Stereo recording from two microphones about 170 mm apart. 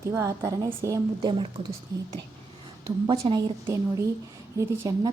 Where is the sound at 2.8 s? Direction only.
30° right (ahead or behind).